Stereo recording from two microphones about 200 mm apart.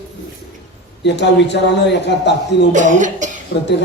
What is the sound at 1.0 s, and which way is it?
A man's voice, 60° left (ahead or behind).